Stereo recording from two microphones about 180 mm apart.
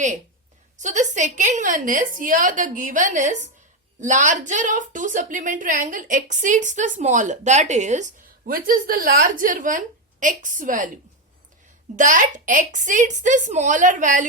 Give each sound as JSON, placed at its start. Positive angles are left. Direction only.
{"t": 0.8, "sound": "a woman's voice", "side_deg": -40}
{"t": 11.9, "sound": "a woman's voice", "side_deg": -45}